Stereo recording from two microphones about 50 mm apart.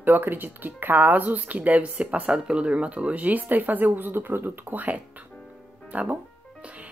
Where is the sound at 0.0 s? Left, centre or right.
Right.